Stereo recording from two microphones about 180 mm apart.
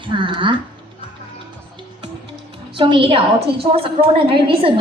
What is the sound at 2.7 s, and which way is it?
A woman's voice, 25° right (ahead or behind).